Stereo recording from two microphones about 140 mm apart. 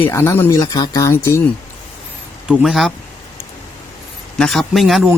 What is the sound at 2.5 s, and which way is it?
Speech, 5° right (ahead or behind).